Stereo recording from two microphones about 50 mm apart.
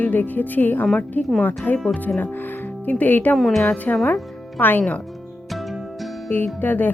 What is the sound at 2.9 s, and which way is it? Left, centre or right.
Speech, left.